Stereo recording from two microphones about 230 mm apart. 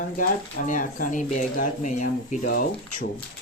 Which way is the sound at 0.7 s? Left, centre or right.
Left.